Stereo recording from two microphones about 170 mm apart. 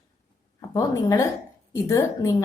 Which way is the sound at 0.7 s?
20° left (ahead or behind).